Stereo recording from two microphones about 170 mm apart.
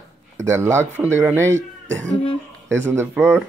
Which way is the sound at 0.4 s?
15° right (ahead or behind).